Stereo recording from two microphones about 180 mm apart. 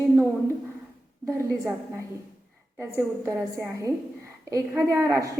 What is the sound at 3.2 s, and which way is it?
A woman's voice, 15° right (ahead or behind).